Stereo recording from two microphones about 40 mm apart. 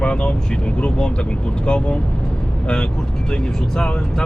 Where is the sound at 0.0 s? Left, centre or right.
Left.